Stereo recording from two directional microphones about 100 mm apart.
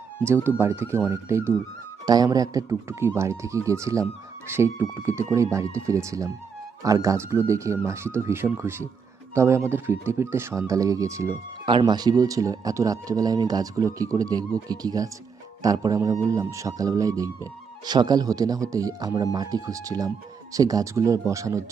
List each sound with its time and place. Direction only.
0.4 s speech: 25° right (ahead or behind)
2.0 s speech: 40° right (ahead or behind)
11.6 s speech: 55° right (ahead or behind); by 21.6 s 30° right (ahead or behind)